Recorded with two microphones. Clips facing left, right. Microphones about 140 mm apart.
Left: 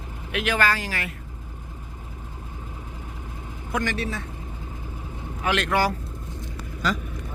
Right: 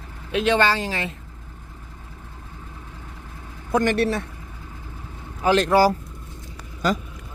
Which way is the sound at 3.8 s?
60° right (ahead or behind).